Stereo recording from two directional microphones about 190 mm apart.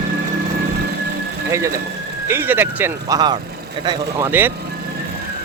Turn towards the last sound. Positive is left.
turn(degrees=-10)  # may be behind; listen again after turning